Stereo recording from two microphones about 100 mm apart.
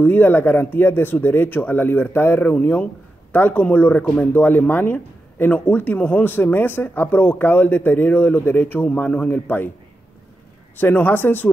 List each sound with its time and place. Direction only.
0.0 s speech: 20° left (ahead or behind)
10.8 s speech: 20° left (ahead or behind)